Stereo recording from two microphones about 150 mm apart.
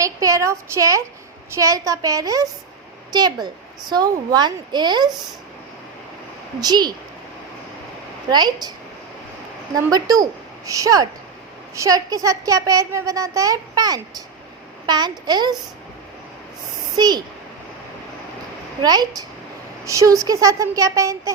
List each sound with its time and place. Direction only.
0.0 s a woman's voice: 20° right (ahead or behind)
6.6 s a woman's voice: 25° right (ahead or behind)
8.3 s a woman's voice: 30° right (ahead or behind)
9.7 s a woman's voice: 25° right (ahead or behind)
17.0 s a woman's voice: 25° right (ahead or behind)
18.8 s a woman's voice: 25° right (ahead or behind)